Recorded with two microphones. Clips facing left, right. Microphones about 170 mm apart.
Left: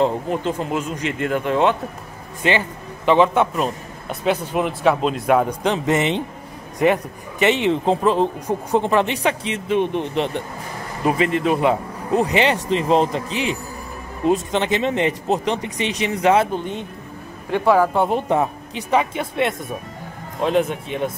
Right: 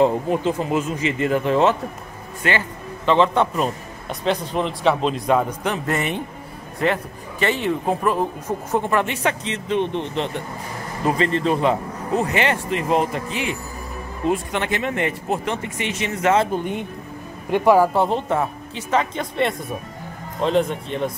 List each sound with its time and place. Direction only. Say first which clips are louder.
0.0 s speech: right 2 dB; 5° right (ahead or behind)
2.4 s speech: left 3 dB; 20° left (ahead or behind); by 5.4 s 5° left (ahead or behind)
5.6 s speech: left 4 dB; 20° left (ahead or behind)
16.5 s speech: right 1 dB; 15° right (ahead or behind)
18.0 s speech: left 2 dB; 15° left (ahead or behind)